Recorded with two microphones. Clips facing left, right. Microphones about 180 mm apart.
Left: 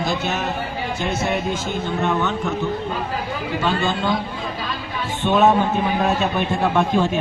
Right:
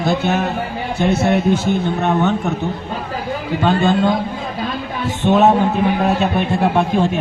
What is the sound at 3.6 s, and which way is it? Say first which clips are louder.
Speech: right 7 dB; 55° right (ahead or behind).